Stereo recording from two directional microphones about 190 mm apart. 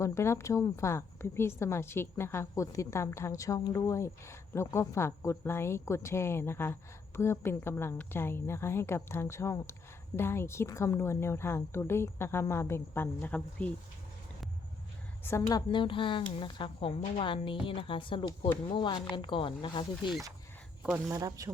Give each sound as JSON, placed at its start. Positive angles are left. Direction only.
{"t": 0.0, "sound": "a woman's voice", "side_deg": 15}
{"t": 15.2, "sound": "a woman's voice", "side_deg": 15}
{"t": 21.1, "sound": "speech", "side_deg": -20}